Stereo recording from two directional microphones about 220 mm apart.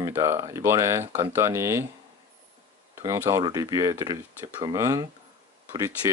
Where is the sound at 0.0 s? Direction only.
10° right (ahead or behind).